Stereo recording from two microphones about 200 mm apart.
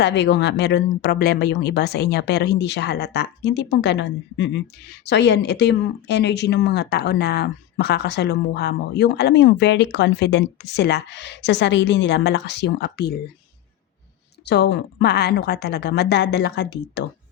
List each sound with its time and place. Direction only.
0.0 s speech: 60° left (ahead or behind)
14.4 s speech: 55° left (ahead or behind)